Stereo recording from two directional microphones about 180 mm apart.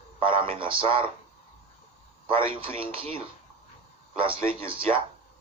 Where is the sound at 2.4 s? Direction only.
30° right (ahead or behind).